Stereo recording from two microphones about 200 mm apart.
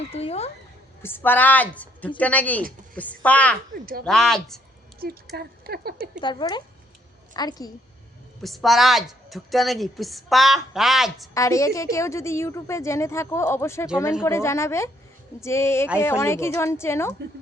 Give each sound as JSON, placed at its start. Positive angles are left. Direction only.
{"t": 0.1, "sound": "speech", "side_deg": 30}
{"t": 1.0, "sound": "a woman's voice", "side_deg": 10}
{"t": 4.9, "sound": "speech", "side_deg": -50}
{"t": 6.2, "sound": "speech", "side_deg": 20}
{"t": 8.4, "sound": "a woman's voice", "side_deg": 0}
{"t": 11.3, "sound": "a woman's voice", "side_deg": 15}